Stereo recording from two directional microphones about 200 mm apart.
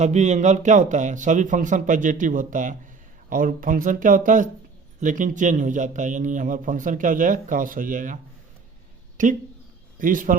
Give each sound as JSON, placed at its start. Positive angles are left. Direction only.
{"t": 0.0, "sound": "a man's voice", "side_deg": -35}